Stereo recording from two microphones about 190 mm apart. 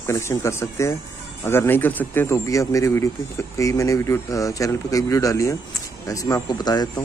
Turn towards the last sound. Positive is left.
turn(degrees=20)  # may be behind; listen again after turning